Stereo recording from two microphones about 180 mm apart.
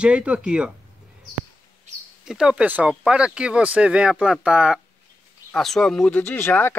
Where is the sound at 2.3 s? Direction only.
5° right (ahead or behind).